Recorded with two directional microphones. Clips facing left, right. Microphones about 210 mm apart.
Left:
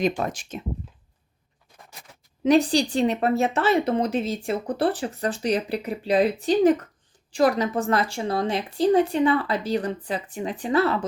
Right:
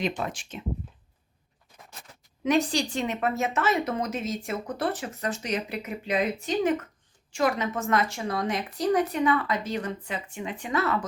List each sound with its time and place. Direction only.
0.2 s a woman's voice: 40° left (ahead or behind)
2.4 s a woman's voice: 35° left (ahead or behind)